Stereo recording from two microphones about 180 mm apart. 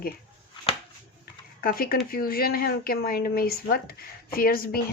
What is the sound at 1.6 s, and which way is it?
Speech, 55° left (ahead or behind).